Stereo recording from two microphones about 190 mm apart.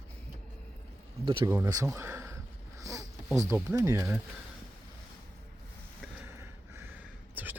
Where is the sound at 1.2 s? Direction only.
25° right (ahead or behind).